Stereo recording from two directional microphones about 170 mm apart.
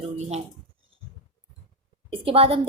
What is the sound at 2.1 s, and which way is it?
Speech, 35° right (ahead or behind).